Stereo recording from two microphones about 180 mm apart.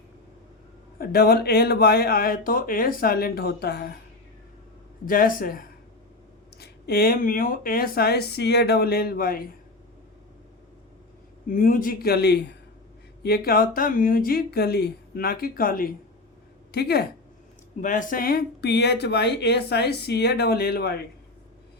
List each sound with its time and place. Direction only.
0.9 s speech: 55° left (ahead or behind)
5.0 s speech: 50° left (ahead or behind)
11.4 s speech: 50° left (ahead or behind)
16.7 s speech: 60° left (ahead or behind)
17.7 s speech: 45° left (ahead or behind); by 20.9 s 60° left (ahead or behind)